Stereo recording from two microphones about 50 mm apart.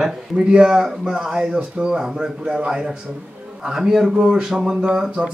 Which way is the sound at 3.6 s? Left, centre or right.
Centre.